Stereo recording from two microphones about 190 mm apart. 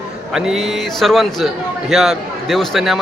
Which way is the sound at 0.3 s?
Centre (ahead or behind).